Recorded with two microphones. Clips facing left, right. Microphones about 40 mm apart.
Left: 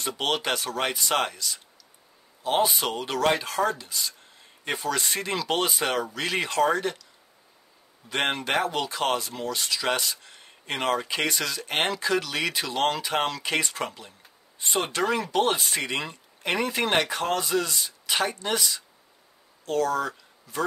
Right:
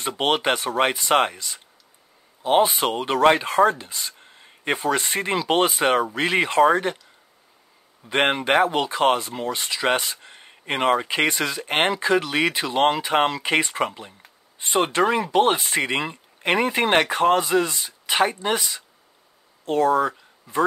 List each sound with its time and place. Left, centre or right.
0.2 s speech: right
8.1 s speech: right